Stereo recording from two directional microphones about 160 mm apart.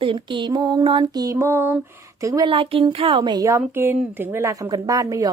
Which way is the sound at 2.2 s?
25° right (ahead or behind).